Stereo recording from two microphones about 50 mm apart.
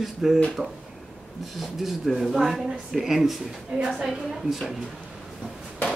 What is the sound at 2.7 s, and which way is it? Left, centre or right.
Speech, centre.